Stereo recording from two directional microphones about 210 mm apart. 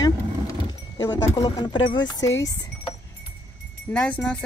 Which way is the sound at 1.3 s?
20° left (ahead or behind).